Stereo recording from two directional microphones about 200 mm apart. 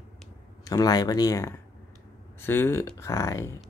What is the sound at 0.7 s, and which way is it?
Speech, 20° left (ahead or behind).